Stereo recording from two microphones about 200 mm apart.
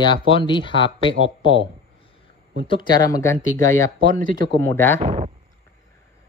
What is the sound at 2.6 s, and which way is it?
Speech, 25° left (ahead or behind).